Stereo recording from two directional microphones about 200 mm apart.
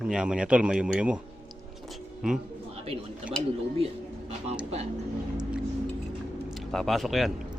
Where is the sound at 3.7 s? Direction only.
30° right (ahead or behind).